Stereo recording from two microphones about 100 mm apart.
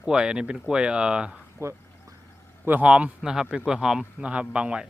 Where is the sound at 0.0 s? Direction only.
10° right (ahead or behind).